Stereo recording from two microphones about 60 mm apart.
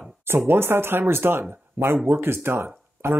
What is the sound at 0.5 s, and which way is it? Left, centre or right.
Speech, right.